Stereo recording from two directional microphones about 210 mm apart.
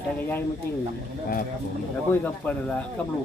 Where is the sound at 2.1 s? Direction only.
10° left (ahead or behind).